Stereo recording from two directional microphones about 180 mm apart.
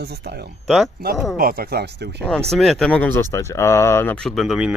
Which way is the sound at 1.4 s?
55° right (ahead or behind).